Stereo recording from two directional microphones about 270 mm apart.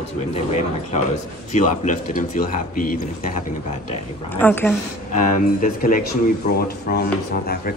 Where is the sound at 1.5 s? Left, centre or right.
Left.